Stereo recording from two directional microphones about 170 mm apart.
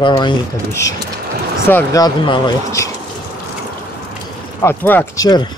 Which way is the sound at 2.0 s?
25° left (ahead or behind).